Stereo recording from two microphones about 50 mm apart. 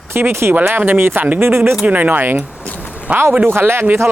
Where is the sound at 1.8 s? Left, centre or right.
Right.